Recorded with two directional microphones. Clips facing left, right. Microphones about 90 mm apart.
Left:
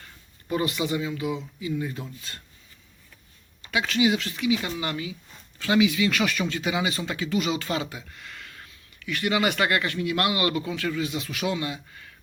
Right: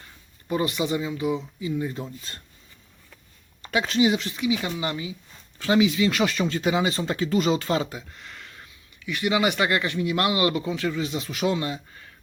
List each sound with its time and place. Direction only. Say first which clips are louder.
0.5 s speech: right 1 dB; 25° right (ahead or behind)
3.6 s speech: right 2 dB; 35° right (ahead or behind)